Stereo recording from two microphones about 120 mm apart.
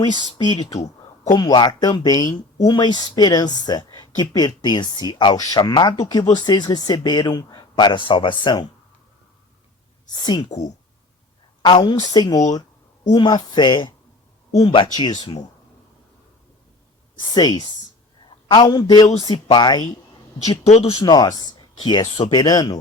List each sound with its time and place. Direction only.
0.1 s speech: 40° right (ahead or behind)
1.3 s speech: 35° left (ahead or behind)
10.1 s speech: 40° left (ahead or behind)
11.6 s speech: 40° left (ahead or behind)
14.9 s speech: 35° left (ahead or behind)
17.2 s a man's voice: 35° left (ahead or behind)
20.7 s speech: 60° left (ahead or behind)
21.0 s speech: 35° left (ahead or behind)